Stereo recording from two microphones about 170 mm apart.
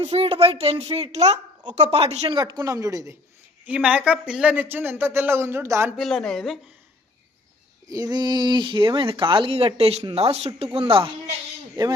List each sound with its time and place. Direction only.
0.0 s speech: 35° right (ahead or behind); by 3.2 s 20° right (ahead or behind)
3.7 s speech: 10° right (ahead or behind)
6.0 s speech: centre (ahead or behind)
7.9 s speech: 25° right (ahead or behind)